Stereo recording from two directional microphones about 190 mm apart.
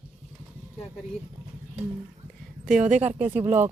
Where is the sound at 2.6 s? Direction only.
5° right (ahead or behind).